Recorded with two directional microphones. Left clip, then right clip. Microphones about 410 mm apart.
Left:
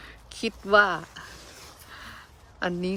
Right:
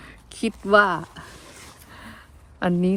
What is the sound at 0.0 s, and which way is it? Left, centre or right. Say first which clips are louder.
Speech: right 3 dB; centre.